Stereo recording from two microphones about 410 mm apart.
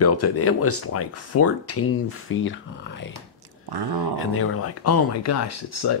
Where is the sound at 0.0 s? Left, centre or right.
Left.